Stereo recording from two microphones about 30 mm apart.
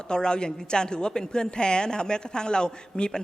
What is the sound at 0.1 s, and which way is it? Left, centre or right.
Speech, left.